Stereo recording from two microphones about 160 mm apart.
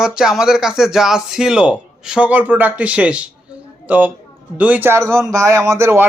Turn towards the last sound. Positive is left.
turn(degrees=-15)  # may be behind; listen again after turning